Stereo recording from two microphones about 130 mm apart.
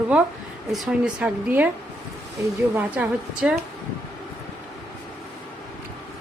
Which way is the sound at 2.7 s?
10° right (ahead or behind).